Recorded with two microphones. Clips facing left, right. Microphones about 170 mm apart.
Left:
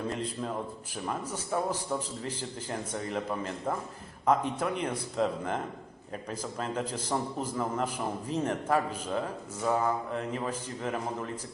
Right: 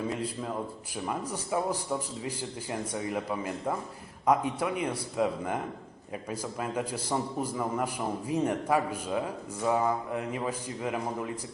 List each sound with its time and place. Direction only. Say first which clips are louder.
0.1 s a man's voice: right 1 dB; 5° right (ahead or behind)